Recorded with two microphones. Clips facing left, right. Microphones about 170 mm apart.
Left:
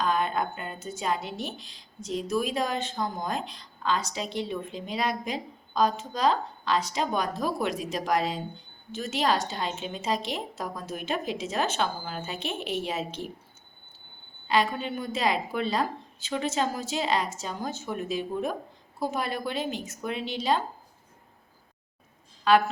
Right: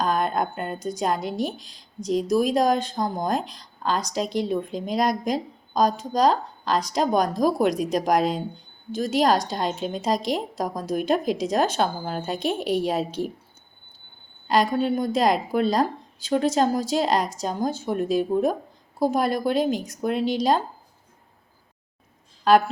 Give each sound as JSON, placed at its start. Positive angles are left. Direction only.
{"t": 0.0, "sound": "a sound", "side_deg": -40}
{"t": 0.9, "sound": "a woman's voice", "side_deg": -40}
{"t": 14.4, "sound": "a woman's voice", "side_deg": -40}
{"t": 22.5, "sound": "a woman's voice", "side_deg": -40}